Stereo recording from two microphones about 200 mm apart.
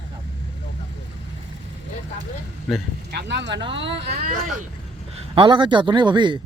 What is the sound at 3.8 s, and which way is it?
Speech, 60° right (ahead or behind).